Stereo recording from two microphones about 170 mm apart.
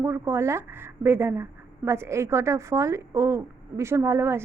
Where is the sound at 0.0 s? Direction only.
15° right (ahead or behind).